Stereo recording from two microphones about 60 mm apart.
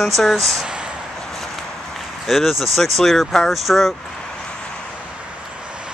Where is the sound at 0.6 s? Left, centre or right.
Centre.